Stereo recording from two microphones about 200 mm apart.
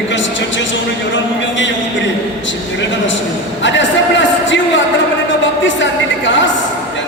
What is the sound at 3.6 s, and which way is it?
Music, 65° left (ahead or behind).